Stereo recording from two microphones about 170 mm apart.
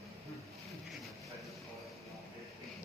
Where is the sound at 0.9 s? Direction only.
Centre (ahead or behind).